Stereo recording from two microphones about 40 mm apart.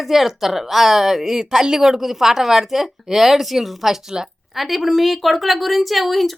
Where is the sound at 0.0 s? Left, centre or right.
Centre.